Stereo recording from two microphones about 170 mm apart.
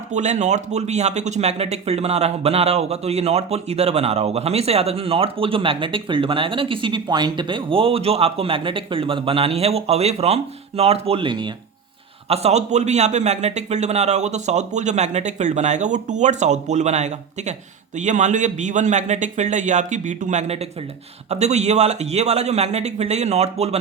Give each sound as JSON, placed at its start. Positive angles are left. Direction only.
{"t": 0.1, "sound": "speech", "side_deg": -45}
{"t": 12.3, "sound": "a man's voice", "side_deg": -40}